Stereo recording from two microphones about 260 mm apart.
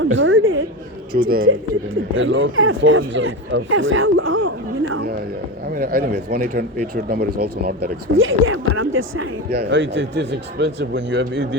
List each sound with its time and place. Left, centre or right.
0.0 s a sound: right
1.1 s speech: right
2.1 s speech: right
5.7 s speech: right
8.0 s speech: right
9.5 s speech: right